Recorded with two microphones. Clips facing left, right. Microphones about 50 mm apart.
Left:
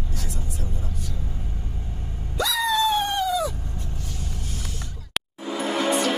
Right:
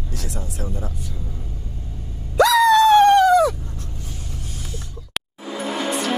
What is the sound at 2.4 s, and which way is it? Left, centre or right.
Dog, right.